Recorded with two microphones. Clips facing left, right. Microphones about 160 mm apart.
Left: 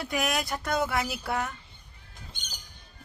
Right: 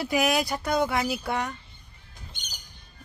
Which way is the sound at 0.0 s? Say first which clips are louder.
Right 5 dB; centre (ahead or behind).